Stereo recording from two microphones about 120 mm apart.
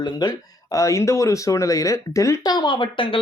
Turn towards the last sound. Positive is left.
turn(degrees=45)  # may be behind; listen again after turning